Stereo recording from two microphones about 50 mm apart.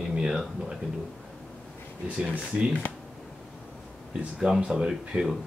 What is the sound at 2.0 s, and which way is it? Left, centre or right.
Speech, right.